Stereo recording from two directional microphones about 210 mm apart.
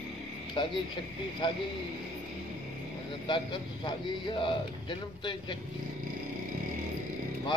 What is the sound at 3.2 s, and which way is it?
A man's voice, 20° left (ahead or behind).